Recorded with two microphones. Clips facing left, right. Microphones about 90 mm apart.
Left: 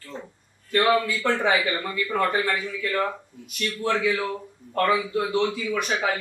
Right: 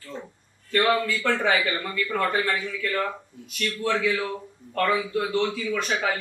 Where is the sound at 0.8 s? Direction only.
5° left (ahead or behind).